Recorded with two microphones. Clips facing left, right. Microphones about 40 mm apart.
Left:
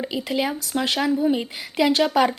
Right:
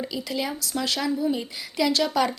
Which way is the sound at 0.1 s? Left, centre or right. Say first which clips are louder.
Left 5 dB; left.